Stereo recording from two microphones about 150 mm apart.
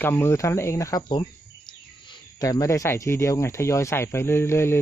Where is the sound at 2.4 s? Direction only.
20° left (ahead or behind).